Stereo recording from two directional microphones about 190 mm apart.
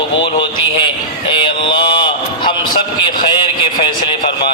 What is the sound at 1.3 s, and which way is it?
Mantra, 25° left (ahead or behind).